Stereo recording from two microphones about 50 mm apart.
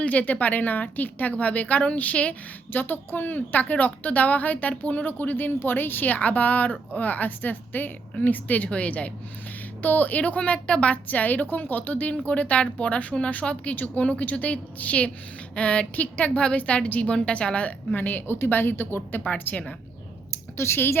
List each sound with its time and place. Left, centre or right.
0.0 s a woman's voice: left
2.7 s a woman's voice: left
17.9 s a woman's voice: left
20.3 s speech: left